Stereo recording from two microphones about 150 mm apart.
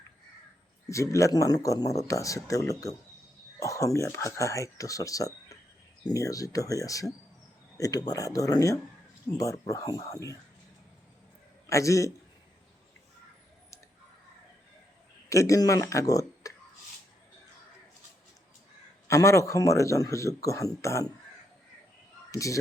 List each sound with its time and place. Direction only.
1.1 s a man's voice: 20° left (ahead or behind)
11.7 s a man's voice: 20° left (ahead or behind)
15.3 s speech: 20° left (ahead or behind)
19.0 s a man's voice: 20° left (ahead or behind)
22.3 s speech: 20° left (ahead or behind)